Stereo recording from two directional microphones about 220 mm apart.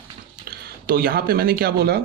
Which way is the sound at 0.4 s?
40° right (ahead or behind).